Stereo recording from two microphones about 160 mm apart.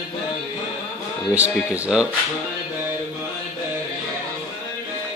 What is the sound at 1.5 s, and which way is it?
Speech, 5° right (ahead or behind).